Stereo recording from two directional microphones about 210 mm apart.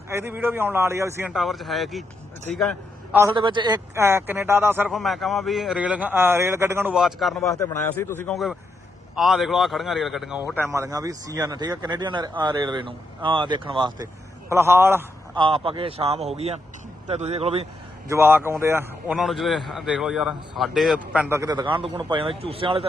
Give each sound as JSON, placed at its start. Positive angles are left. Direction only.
{"t": 0.1, "sound": "speech", "side_deg": -10}
{"t": 1.3, "sound": "speech", "side_deg": 0}
{"t": 2.6, "sound": "a sound", "side_deg": 0}
{"t": 3.3, "sound": "speech", "side_deg": -20}
{"t": 4.9, "sound": "speech", "side_deg": 0}
{"t": 7.5, "sound": "speech", "side_deg": 15}
{"t": 9.1, "sound": "speech", "side_deg": 0}
{"t": 10.6, "sound": "speech", "side_deg": -15}
{"t": 15.4, "sound": "speech", "side_deg": -25}
{"t": 18.1, "sound": "speech", "side_deg": -10}